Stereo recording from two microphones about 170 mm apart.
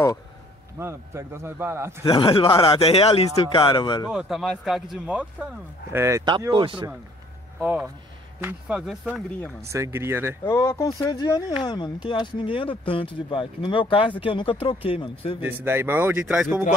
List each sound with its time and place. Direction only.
0.7 s speech: 15° right (ahead or behind)
2.0 s speech: 30° left (ahead or behind)
4.1 s speech: centre (ahead or behind); by 6.9 s 30° right (ahead or behind)
8.4 s speech: 10° right (ahead or behind)
10.4 s speech: 15° left (ahead or behind); by 15.3 s 35° left (ahead or behind)
15.4 s speech: 15° right (ahead or behind)